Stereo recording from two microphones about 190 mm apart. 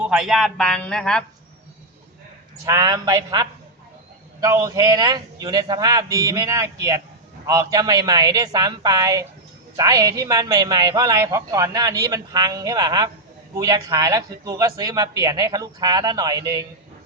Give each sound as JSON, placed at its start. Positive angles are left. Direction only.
{"t": 0.0, "sound": "a man's voice", "side_deg": -5}
{"t": 2.6, "sound": "a man's voice", "side_deg": -20}